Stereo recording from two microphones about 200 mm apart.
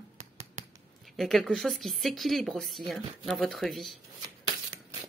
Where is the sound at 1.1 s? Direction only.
Centre (ahead or behind).